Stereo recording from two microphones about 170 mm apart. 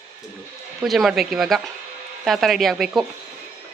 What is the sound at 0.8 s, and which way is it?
A woman's voice, centre (ahead or behind).